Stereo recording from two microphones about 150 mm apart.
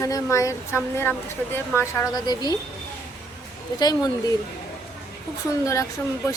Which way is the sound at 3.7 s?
25° left (ahead or behind).